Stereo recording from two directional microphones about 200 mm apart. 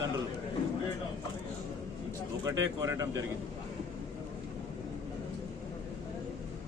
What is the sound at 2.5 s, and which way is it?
Speech, 15° right (ahead or behind).